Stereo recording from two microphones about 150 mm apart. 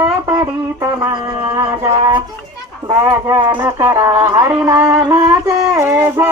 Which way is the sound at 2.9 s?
20° right (ahead or behind).